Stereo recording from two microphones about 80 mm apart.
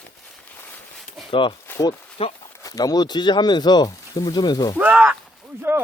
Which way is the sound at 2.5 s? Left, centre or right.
Left.